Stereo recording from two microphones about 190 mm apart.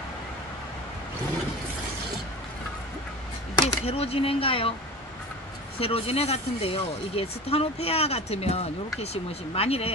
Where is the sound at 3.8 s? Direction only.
30° left (ahead or behind).